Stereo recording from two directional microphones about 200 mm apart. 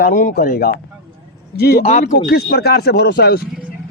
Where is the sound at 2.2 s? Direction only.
55° left (ahead or behind).